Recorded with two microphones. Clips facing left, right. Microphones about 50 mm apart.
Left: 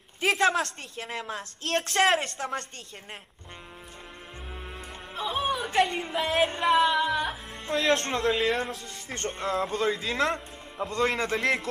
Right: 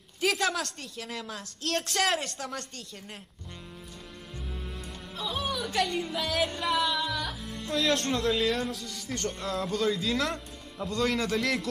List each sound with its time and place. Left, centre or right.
0.2 s music: left
5.1 s music: left